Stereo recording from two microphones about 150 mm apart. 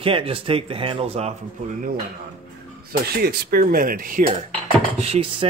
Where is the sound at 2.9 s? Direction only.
90° right; by 4.3 s 65° right (ahead or behind).